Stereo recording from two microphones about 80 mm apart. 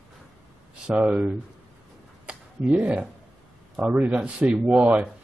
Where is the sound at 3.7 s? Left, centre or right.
Centre.